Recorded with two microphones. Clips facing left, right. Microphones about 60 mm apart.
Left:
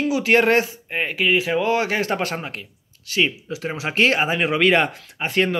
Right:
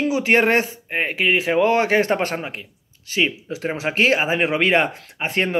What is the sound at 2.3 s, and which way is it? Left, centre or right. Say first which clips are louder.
Speech: right 2 dB; centre.